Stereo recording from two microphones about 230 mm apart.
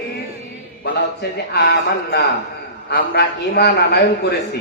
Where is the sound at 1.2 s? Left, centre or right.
Left.